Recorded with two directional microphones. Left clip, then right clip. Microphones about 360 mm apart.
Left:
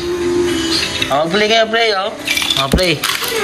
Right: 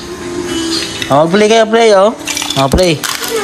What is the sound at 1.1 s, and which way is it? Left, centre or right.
Speech, centre.